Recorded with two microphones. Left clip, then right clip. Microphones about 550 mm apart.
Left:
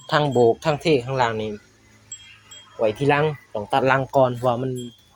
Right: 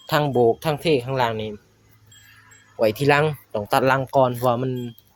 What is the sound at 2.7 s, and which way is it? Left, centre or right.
Speech, right.